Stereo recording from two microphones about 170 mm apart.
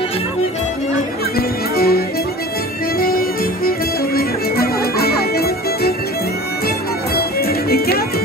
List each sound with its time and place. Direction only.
1.8 s music: 65° left (ahead or behind)
7.2 s music: 65° left (ahead or behind)